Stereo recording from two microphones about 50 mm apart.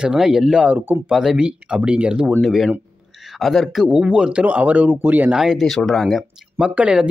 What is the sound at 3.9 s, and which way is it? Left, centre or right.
Speech, right.